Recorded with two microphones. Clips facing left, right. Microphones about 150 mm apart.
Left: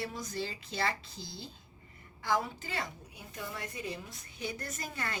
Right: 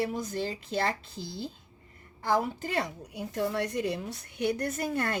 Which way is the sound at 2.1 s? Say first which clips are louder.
Right 5 dB; 45° right (ahead or behind).